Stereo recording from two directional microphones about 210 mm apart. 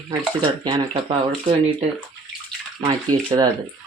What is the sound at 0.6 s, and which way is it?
Speech, 20° right (ahead or behind).